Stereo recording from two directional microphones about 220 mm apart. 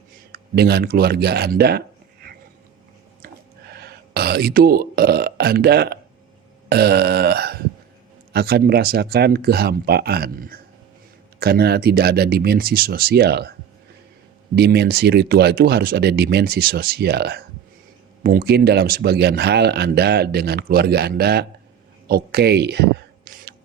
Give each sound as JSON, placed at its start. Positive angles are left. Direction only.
{"t": 0.3, "sound": "speech", "side_deg": -45}
{"t": 3.7, "sound": "speech", "side_deg": -45}
{"t": 14.5, "sound": "speech", "side_deg": -50}
{"t": 22.0, "sound": "a sound", "side_deg": -45}